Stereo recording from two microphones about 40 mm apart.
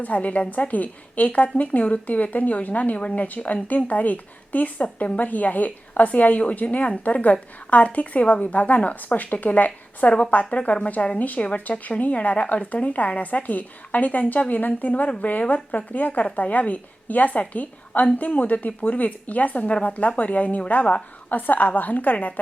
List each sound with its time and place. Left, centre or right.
0.0 s speech: left
3.2 s speech: left
10.1 s speech: left
21.2 s a woman's voice: left